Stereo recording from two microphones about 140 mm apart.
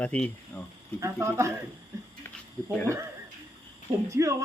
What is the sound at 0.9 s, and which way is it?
Speech, 20° right (ahead or behind).